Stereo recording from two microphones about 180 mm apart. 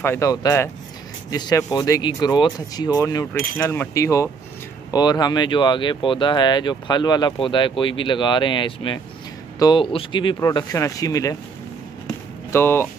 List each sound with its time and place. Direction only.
0.0 s speech: 15° left (ahead or behind)
12.5 s speech: 10° left (ahead or behind)